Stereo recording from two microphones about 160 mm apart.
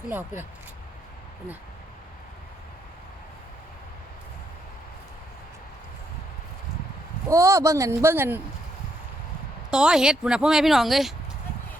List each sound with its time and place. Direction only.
0.1 s speech: 15° right (ahead or behind)
7.3 s speech: 20° right (ahead or behind)
9.6 s speech: 5° right (ahead or behind)